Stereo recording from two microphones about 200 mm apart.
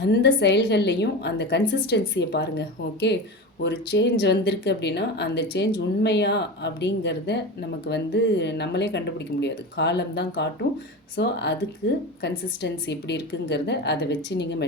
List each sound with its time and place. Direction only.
0.0 s speech: 60° left (ahead or behind)